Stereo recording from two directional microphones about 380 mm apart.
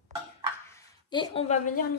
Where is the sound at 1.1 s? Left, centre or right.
Centre.